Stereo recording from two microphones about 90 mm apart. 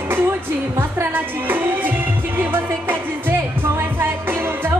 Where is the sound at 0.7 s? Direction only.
25° right (ahead or behind).